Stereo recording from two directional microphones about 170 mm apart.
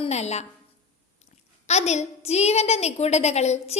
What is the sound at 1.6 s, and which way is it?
A woman's voice, 40° left (ahead or behind).